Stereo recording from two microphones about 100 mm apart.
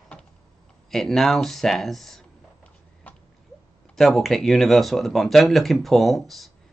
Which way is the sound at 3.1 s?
15° left (ahead or behind).